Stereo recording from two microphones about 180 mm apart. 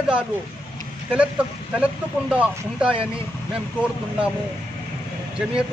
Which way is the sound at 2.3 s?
5° right (ahead or behind).